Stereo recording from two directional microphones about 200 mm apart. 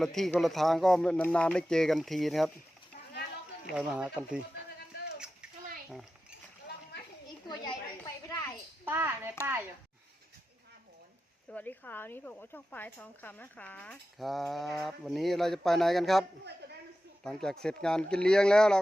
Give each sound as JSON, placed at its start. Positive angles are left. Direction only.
{"t": 0.0, "sound": "speech", "side_deg": 0}
{"t": 3.7, "sound": "speech", "side_deg": -5}
{"t": 7.4, "sound": "a sound", "side_deg": 20}
{"t": 8.8, "sound": "a child's voice", "side_deg": -10}
{"t": 11.5, "sound": "speech", "side_deg": 10}
{"t": 17.2, "sound": "speech", "side_deg": 5}